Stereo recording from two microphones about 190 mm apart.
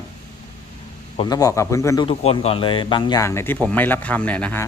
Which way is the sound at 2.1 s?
30° left (ahead or behind).